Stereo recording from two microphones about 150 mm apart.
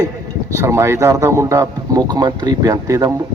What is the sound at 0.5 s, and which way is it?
Speech, 20° right (ahead or behind).